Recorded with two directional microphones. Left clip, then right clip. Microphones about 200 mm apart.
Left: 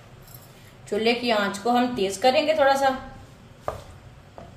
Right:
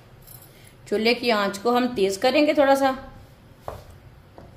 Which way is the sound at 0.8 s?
50° right (ahead or behind).